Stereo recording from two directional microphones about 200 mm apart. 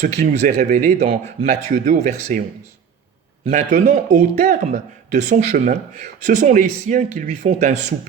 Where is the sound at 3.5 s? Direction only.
40° right (ahead or behind).